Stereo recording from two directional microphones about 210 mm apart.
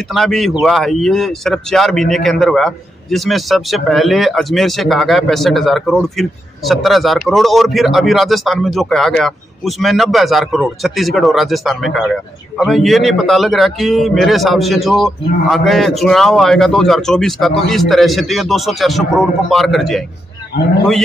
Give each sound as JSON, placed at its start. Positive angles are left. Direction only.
{"t": 0.1, "sound": "speech", "side_deg": 0}